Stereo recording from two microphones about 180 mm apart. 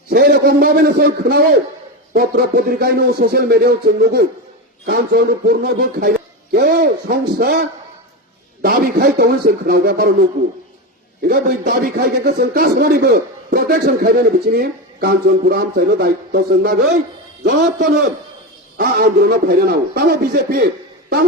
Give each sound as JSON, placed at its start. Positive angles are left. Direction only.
{"t": 0.1, "sound": "a man's voice", "side_deg": -55}
{"t": 8.6, "sound": "a man's voice", "side_deg": -55}